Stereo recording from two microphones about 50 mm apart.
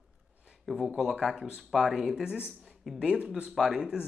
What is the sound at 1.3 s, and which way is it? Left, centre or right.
Speech, centre.